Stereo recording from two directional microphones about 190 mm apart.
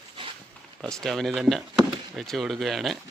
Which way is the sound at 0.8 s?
Centre (ahead or behind).